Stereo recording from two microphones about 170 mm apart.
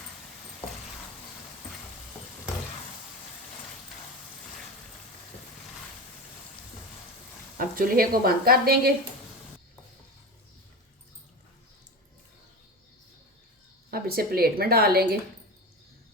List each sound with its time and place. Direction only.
7.6 s speech: 55° right (ahead or behind)
13.9 s speech: 65° right (ahead or behind)